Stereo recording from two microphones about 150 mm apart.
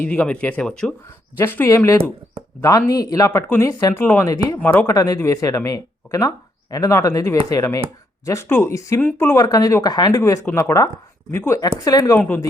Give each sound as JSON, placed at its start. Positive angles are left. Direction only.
{"t": 0.0, "sound": "speech", "side_deg": 10}